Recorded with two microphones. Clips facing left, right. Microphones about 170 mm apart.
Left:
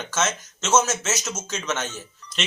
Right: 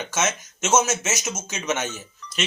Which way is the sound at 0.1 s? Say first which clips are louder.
Left 1 dB; 10° right (ahead or behind).